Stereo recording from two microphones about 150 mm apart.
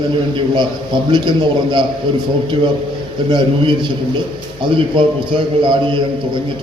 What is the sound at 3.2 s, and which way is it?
Speech, 30° right (ahead or behind).